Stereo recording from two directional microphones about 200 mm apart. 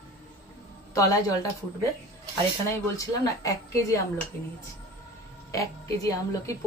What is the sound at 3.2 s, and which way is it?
Speech, 15° left (ahead or behind).